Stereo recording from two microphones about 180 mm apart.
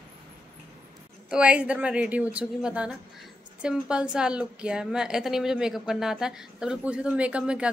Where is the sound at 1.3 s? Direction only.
5° right (ahead or behind).